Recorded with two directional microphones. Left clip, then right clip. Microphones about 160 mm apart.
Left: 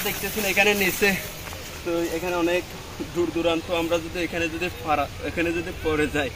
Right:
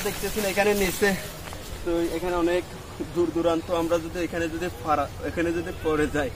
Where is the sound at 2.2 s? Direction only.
30° left (ahead or behind).